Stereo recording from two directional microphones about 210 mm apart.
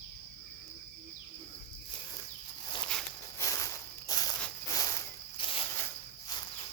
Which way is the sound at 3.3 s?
15° left (ahead or behind).